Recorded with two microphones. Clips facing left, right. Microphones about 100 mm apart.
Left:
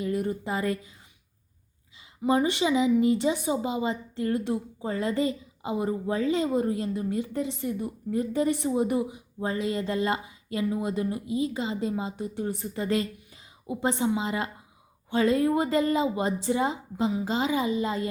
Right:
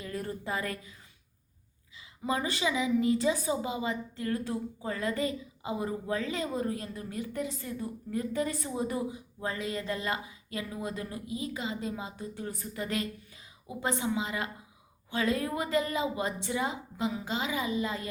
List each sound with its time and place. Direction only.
0.0 s a woman's voice: 20° left (ahead or behind)
2.2 s a woman's voice: 25° left (ahead or behind)